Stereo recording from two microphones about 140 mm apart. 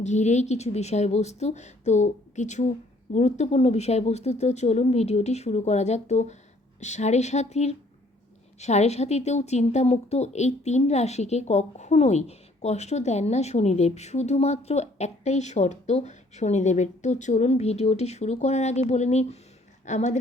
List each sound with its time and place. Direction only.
0.0 s a woman's voice: 55° left (ahead or behind)